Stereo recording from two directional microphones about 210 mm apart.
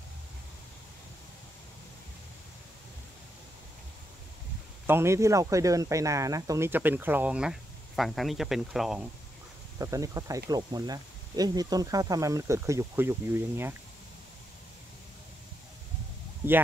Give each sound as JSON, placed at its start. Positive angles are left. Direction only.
{"t": 4.8, "sound": "speech", "side_deg": -10}
{"t": 9.8, "sound": "speech", "side_deg": -15}